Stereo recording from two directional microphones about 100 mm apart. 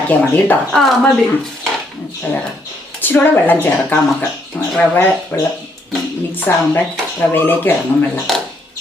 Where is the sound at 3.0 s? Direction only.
20° left (ahead or behind).